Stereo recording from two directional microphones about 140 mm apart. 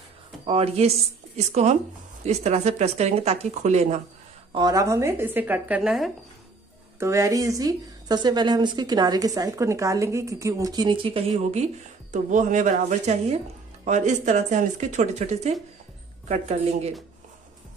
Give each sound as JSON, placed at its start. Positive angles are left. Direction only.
{"t": 0.5, "sound": "speech", "side_deg": -45}
{"t": 4.6, "sound": "a woman's voice", "side_deg": -25}
{"t": 5.8, "sound": "speech", "side_deg": 0}
{"t": 7.0, "sound": "a woman's voice", "side_deg": -20}